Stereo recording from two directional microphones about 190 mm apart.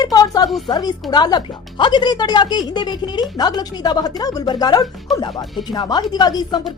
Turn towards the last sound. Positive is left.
turn(degrees=20)  # may be behind; listen again after turning